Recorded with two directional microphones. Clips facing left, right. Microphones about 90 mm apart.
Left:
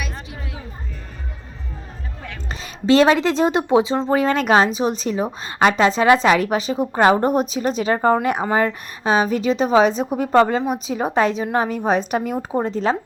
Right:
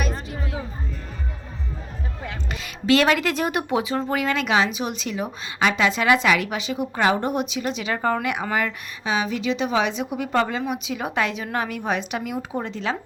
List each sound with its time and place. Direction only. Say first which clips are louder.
2.5 s a woman's voice: left 4 dB; 30° left (ahead or behind)